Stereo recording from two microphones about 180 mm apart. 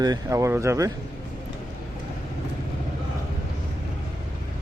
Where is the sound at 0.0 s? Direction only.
20° right (ahead or behind).